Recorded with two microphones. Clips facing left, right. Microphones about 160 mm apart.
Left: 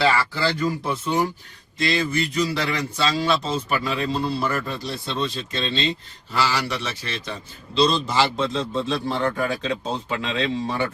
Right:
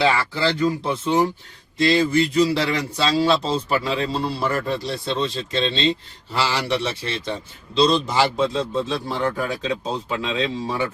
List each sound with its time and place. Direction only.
0.0 s speech: 20° right (ahead or behind)
7.8 s a man's voice: 15° right (ahead or behind)